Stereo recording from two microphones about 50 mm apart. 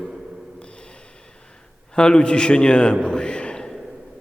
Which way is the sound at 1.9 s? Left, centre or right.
Centre.